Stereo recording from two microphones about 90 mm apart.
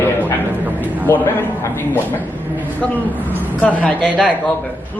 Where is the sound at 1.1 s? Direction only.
20° left (ahead or behind).